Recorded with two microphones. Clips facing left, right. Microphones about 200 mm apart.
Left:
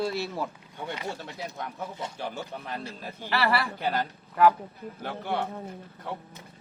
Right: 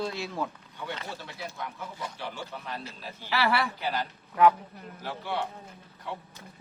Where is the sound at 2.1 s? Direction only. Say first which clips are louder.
Left 4 dB; 45° left (ahead or behind).